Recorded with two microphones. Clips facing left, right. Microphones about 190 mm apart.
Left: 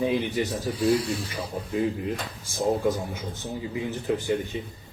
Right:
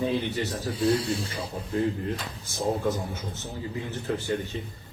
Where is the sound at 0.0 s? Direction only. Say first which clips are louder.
Left 2 dB; 10° left (ahead or behind).